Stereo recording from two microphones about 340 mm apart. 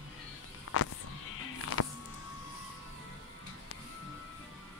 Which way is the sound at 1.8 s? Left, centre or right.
Left.